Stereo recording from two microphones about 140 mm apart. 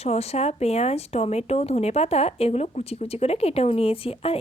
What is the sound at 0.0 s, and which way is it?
Speech, 50° left (ahead or behind).